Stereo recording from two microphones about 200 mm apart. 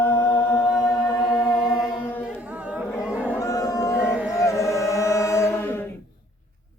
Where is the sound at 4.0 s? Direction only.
5° right (ahead or behind).